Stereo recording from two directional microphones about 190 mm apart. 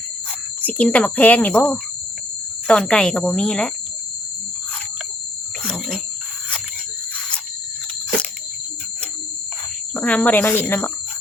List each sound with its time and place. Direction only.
0.6 s cricket: 5° left (ahead or behind)
2.6 s speech: 5° left (ahead or behind)
5.6 s a sound: centre (ahead or behind)
9.9 s cricket: 5° left (ahead or behind)